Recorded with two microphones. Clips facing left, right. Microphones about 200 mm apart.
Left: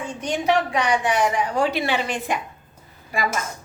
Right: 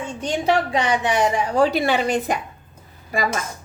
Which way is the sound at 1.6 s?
40° right (ahead or behind).